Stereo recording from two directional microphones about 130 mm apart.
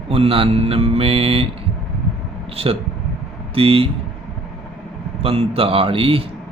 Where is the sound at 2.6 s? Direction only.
50° right (ahead or behind).